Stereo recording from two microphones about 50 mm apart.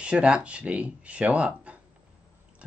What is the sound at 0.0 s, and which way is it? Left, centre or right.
Speech, right.